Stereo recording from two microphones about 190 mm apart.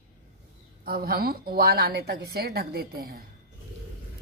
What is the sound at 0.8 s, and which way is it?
A woman's voice, 50° right (ahead or behind).